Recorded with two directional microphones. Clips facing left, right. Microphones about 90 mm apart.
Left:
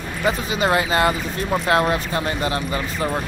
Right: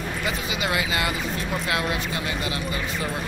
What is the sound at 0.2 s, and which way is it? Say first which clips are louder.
Speech: left 9 dB; 40° left (ahead or behind).